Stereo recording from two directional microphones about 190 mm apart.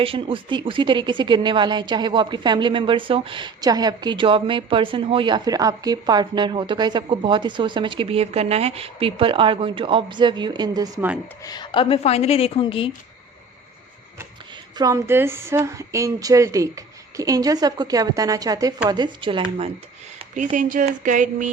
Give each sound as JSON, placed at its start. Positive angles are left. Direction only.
{"t": 0.0, "sound": "speech", "side_deg": -30}
{"t": 11.4, "sound": "a woman's voice", "side_deg": 20}
{"t": 14.8, "sound": "speech", "side_deg": -15}
{"t": 20.1, "sound": "speech", "side_deg": -40}